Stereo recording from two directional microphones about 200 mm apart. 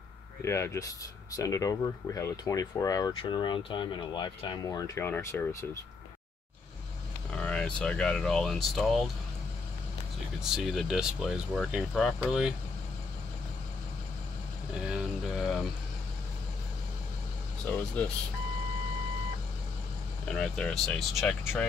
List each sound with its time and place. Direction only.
0.4 s speech: 15° left (ahead or behind)
7.3 s speech: 5° left (ahead or behind)
10.4 s speech: centre (ahead or behind)
17.6 s speech: 5° left (ahead or behind)
20.2 s speech: 5° left (ahead or behind)